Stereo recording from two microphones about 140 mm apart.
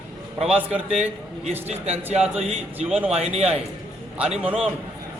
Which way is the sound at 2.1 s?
50° right (ahead or behind).